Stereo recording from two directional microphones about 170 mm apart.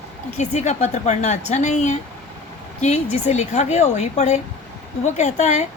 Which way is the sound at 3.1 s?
40° left (ahead or behind).